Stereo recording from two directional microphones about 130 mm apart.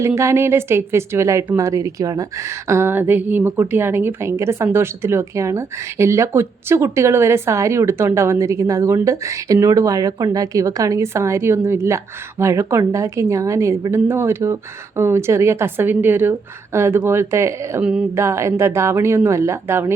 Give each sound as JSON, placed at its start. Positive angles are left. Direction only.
{"t": 0.0, "sound": "a woman's voice", "side_deg": -20}